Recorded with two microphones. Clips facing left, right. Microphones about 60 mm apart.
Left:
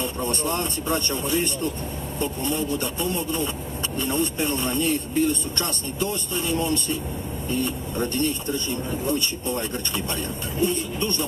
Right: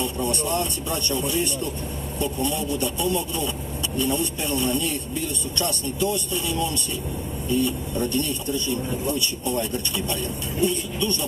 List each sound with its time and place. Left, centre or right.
0.0 s a man's voice: left